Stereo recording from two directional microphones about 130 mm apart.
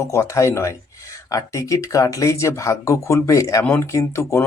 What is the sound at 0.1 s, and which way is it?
Speech, 20° left (ahead or behind).